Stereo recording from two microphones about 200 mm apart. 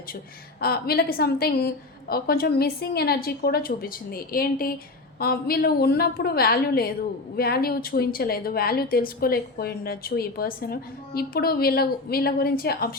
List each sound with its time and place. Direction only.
0.6 s a woman's voice: 50° left (ahead or behind)